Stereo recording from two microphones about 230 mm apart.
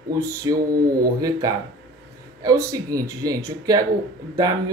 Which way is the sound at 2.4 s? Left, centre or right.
Centre.